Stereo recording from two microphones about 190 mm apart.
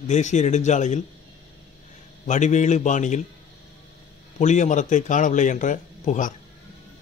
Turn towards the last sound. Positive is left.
turn(degrees=40)  # may be behind; listen again after turning